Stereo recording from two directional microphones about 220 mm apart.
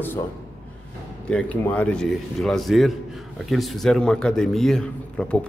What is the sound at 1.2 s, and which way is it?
A man's voice, 5° left (ahead or behind).